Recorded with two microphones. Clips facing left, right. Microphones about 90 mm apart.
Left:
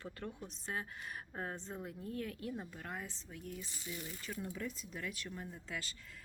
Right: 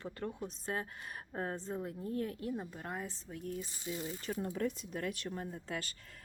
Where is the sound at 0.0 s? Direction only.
35° right (ahead or behind).